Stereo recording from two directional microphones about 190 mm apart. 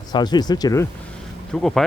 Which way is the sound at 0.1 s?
20° left (ahead or behind).